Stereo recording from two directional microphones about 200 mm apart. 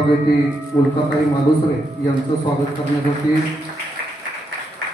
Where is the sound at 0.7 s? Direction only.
25° left (ahead or behind).